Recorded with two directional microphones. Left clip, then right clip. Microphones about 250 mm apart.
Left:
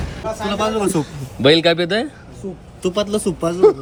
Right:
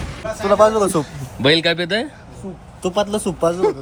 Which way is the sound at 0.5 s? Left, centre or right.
Left.